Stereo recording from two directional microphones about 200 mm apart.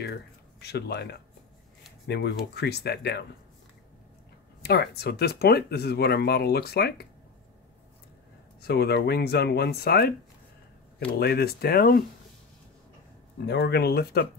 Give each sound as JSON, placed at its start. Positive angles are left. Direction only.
{"t": 0.0, "sound": "speech", "side_deg": 55}
{"t": 4.6, "sound": "speech", "side_deg": 55}
{"t": 8.5, "sound": "speech", "side_deg": 55}
{"t": 11.1, "sound": "speech", "side_deg": 50}
{"t": 13.5, "sound": "speech", "side_deg": 55}